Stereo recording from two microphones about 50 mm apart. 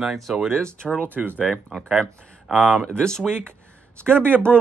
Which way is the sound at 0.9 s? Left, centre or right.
Right.